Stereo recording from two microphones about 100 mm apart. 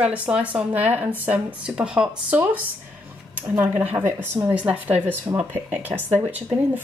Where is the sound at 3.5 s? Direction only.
15° right (ahead or behind).